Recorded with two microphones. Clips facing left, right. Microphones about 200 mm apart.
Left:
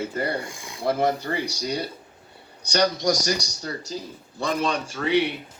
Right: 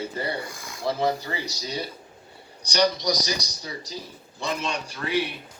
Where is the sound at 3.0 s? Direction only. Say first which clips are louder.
Left 4 dB; 50° left (ahead or behind).